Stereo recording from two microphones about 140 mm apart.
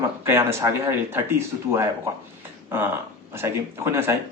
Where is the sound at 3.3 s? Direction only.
15° right (ahead or behind).